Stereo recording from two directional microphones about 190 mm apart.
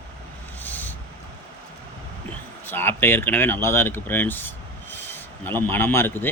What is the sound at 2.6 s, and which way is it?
Speech, 10° left (ahead or behind).